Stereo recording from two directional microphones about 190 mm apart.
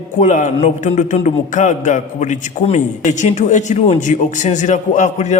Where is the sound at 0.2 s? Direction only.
40° left (ahead or behind).